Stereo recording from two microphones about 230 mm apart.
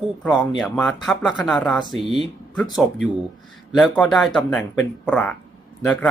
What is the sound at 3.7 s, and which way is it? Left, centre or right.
Speech, centre.